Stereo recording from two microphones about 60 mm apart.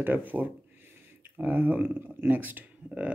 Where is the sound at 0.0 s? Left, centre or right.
Right.